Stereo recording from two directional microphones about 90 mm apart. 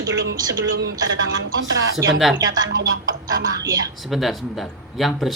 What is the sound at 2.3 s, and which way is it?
Speech, 45° right (ahead or behind).